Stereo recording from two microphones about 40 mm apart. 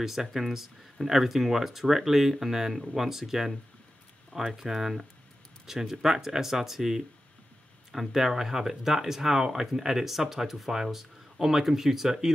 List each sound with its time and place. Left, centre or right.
0.0 s speech: centre